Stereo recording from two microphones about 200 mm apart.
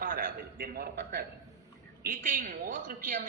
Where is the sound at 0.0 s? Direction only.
45° right (ahead or behind).